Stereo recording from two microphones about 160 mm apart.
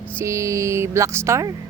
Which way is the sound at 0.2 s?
20° right (ahead or behind).